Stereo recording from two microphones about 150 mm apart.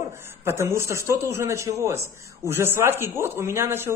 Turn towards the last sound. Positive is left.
turn(degrees=-15)  # may be behind; listen again after turning